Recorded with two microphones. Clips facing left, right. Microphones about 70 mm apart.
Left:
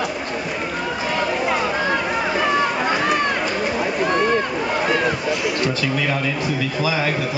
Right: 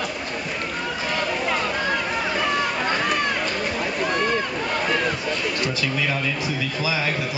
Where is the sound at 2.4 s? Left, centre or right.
Centre.